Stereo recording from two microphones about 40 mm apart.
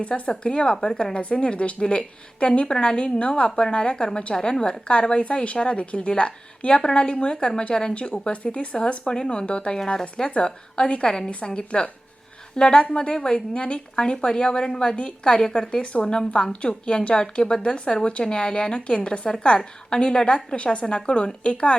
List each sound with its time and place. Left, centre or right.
0.0 s a woman's voice: left